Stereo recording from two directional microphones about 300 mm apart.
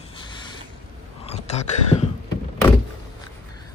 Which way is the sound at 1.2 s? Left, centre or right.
Left.